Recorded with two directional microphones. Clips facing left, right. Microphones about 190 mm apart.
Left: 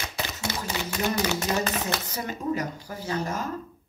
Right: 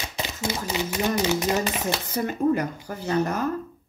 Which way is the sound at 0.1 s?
20° right (ahead or behind).